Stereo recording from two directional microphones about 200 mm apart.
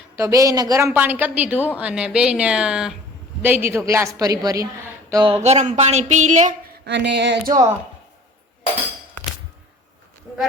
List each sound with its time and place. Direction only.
0.2 s a woman's voice: 15° right (ahead or behind)
5.3 s speech: 35° right (ahead or behind)
6.8 s speech: 60° right (ahead or behind)